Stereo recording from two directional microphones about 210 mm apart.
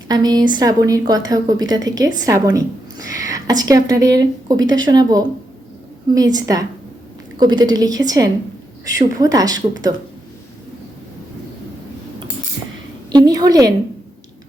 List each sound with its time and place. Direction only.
0.1 s a woman's voice: 20° right (ahead or behind)
6.3 s a woman's voice: 15° right (ahead or behind)
13.1 s a woman's voice: 20° right (ahead or behind)